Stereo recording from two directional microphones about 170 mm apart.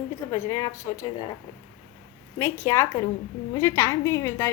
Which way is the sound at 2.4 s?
15° left (ahead or behind).